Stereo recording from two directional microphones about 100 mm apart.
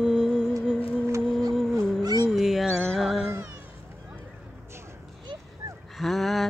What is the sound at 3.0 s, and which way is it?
Cat, centre (ahead or behind).